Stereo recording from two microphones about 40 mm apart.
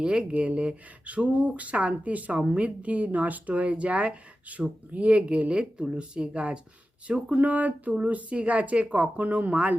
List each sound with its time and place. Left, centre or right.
0.0 s speech: right
7.3 s speech: right